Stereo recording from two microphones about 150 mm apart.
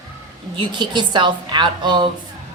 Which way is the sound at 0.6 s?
30° right (ahead or behind).